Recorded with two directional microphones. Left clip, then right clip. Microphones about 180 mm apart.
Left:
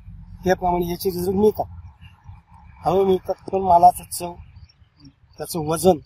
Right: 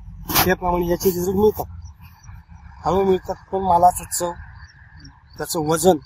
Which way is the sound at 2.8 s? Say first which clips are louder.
Even; 20° left (ahead or behind).